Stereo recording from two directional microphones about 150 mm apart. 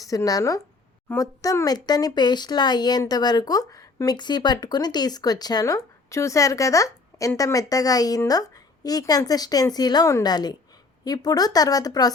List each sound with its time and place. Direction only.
0.0 s speech: 25° left (ahead or behind)